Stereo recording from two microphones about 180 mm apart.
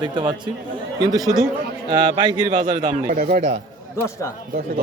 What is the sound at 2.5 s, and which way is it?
Speech, 40° right (ahead or behind).